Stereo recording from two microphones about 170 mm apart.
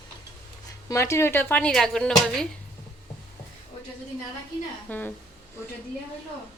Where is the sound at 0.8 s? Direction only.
15° left (ahead or behind).